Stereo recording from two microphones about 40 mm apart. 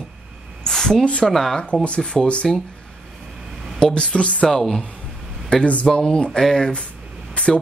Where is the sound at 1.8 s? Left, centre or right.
Left.